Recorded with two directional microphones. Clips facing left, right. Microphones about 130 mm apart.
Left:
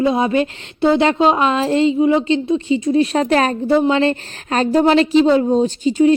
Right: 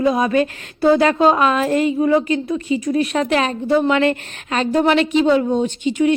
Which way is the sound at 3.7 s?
25° left (ahead or behind).